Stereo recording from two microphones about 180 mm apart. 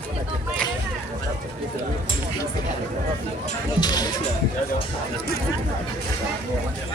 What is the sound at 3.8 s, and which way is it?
Speech, 20° left (ahead or behind).